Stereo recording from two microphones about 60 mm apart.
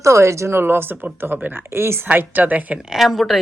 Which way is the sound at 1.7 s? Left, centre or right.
Right.